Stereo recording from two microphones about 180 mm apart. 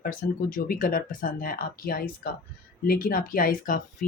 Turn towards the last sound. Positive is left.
turn(degrees=50)  # may be behind; listen again after turning